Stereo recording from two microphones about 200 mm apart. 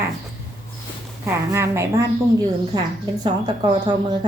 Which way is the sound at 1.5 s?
15° right (ahead or behind).